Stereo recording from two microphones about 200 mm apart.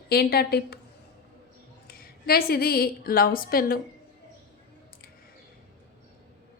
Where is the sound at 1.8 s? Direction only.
50° left (ahead or behind).